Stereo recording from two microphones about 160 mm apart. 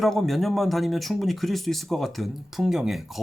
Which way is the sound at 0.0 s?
Centre (ahead or behind).